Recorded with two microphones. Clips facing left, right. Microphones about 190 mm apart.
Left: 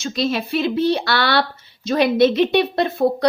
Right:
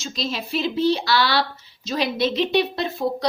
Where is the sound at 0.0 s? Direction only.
60° left (ahead or behind).